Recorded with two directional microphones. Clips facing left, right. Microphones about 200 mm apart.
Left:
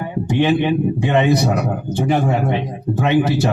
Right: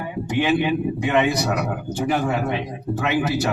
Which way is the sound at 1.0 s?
30° left (ahead or behind).